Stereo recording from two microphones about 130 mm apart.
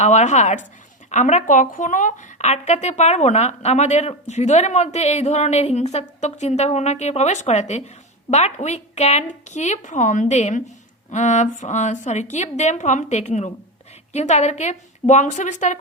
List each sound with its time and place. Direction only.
0.0 s a woman's voice: 65° left (ahead or behind)